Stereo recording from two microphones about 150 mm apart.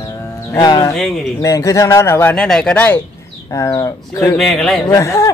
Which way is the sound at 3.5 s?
20° left (ahead or behind).